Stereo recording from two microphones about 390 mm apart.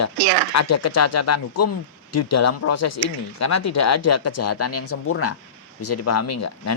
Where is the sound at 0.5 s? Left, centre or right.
Left.